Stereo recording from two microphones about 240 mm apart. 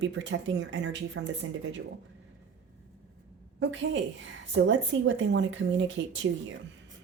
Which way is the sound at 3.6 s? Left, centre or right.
Right.